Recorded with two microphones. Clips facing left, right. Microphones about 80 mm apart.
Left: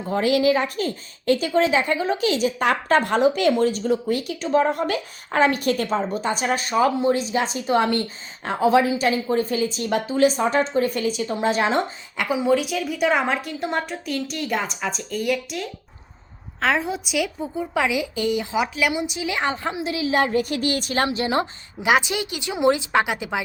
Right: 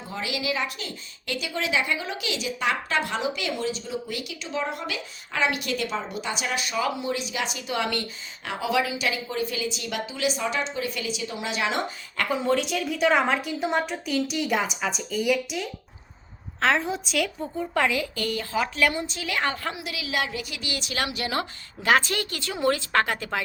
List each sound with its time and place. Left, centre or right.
0.1 s speech: left
12.1 s a woman's voice: centre; by 21.4 s left
21.8 s a woman's voice: centre